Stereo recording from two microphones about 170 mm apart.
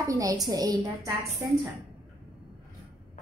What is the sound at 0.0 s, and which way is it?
A woman's voice, 20° right (ahead or behind).